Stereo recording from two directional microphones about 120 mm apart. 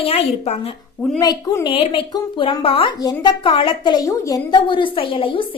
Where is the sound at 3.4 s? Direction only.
50° left (ahead or behind).